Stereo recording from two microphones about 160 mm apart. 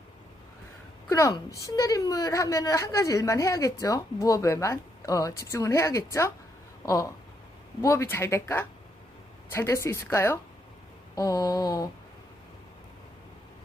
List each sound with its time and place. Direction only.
1.1 s a woman's voice: 20° left (ahead or behind)